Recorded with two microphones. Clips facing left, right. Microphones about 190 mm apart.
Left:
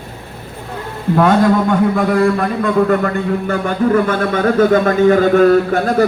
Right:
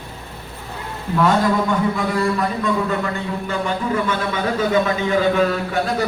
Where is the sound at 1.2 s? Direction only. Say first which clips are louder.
Left 5 dB; 55° left (ahead or behind).